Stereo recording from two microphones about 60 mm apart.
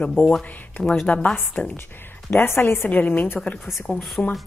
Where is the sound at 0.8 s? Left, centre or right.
Centre.